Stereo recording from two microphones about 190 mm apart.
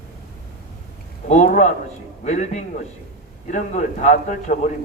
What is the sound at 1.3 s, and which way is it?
A man's voice, 40° left (ahead or behind).